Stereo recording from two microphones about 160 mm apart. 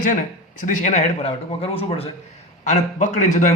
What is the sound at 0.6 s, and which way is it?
Speech, 50° left (ahead or behind).